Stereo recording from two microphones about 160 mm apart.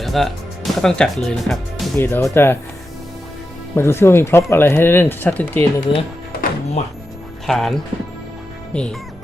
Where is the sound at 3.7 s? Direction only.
15° left (ahead or behind).